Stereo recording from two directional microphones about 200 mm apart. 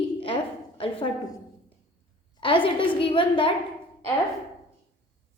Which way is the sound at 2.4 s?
25° left (ahead or behind).